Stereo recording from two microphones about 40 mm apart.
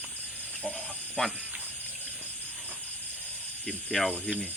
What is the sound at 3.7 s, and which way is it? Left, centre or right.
Speech, centre.